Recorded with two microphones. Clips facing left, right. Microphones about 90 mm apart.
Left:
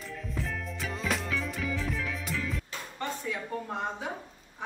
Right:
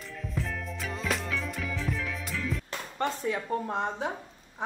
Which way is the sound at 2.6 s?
60° right (ahead or behind).